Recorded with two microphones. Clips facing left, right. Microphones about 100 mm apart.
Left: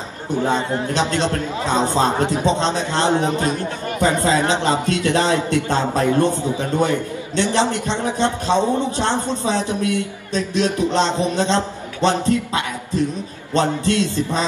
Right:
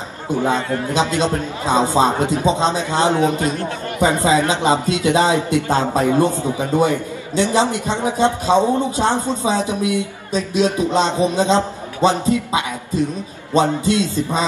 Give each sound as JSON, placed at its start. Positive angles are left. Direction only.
{"t": 0.5, "sound": "a man's voice", "side_deg": 25}
{"t": 0.9, "sound": "a man's voice", "side_deg": -15}
{"t": 3.1, "sound": "a man's voice", "side_deg": 25}
{"t": 4.0, "sound": "a man's voice", "side_deg": -15}